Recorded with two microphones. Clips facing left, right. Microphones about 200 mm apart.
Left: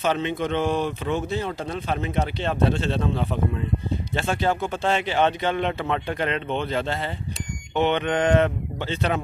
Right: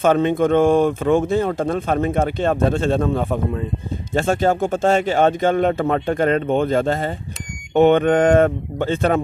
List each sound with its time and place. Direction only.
0.0 s speech: 50° right (ahead or behind)